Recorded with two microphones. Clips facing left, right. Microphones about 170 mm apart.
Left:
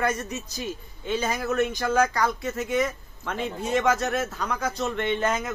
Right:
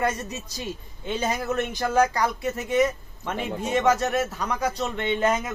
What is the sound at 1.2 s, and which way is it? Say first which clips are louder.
Speech: even; 25° right (ahead or behind).